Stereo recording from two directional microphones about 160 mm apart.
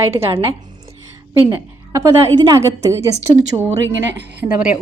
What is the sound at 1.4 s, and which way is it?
A woman's voice, 20° right (ahead or behind).